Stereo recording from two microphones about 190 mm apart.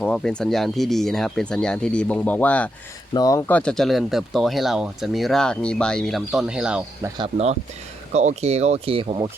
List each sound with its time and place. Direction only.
0.0 s speech: 5° left (ahead or behind)
3.1 s speech: 20° left (ahead or behind); by 7.1 s 5° right (ahead or behind)
7.2 s speech: 35° right (ahead or behind)